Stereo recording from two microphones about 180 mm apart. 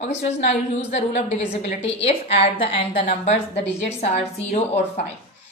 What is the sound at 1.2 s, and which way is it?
A woman's voice, 40° left (ahead or behind).